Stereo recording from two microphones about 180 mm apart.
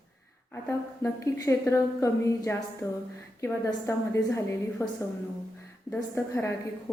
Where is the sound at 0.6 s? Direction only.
15° left (ahead or behind).